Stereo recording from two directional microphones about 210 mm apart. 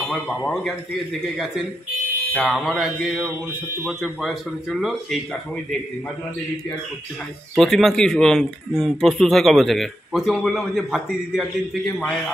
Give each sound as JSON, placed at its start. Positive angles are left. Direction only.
{"t": 0.0, "sound": "speech", "side_deg": 0}
{"t": 2.3, "sound": "a man's voice", "side_deg": 0}
{"t": 7.5, "sound": "a man's voice", "side_deg": 0}